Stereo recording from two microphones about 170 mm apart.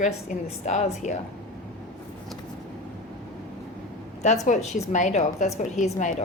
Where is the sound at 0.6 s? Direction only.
40° left (ahead or behind).